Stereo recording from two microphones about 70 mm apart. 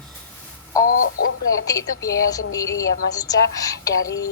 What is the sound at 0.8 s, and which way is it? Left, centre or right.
A woman's voice, left.